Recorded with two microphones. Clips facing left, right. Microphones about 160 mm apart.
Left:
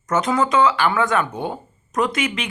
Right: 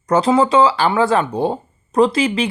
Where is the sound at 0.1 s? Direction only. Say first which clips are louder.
Right 5 dB; 30° right (ahead or behind).